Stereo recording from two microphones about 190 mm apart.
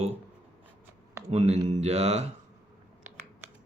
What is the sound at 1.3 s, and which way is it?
Mantra, 35° right (ahead or behind).